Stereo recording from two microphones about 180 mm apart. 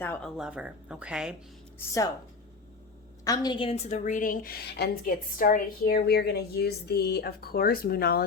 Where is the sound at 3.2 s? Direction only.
20° left (ahead or behind).